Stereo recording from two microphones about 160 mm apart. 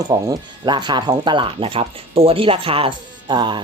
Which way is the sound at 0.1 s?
25° right (ahead or behind).